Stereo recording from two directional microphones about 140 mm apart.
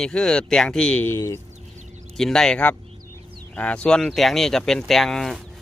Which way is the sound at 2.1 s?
5° left (ahead or behind).